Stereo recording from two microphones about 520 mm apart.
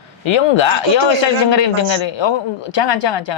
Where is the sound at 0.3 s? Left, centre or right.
Left.